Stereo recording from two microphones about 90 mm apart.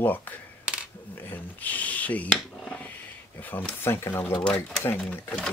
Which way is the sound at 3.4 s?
15° left (ahead or behind).